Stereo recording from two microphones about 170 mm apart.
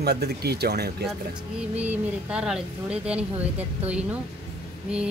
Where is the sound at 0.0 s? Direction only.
70° right (ahead or behind).